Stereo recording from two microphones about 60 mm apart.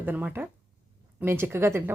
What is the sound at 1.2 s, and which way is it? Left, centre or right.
Speech, right.